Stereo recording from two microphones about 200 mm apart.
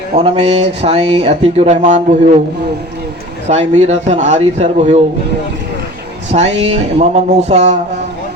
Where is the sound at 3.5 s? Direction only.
35° right (ahead or behind).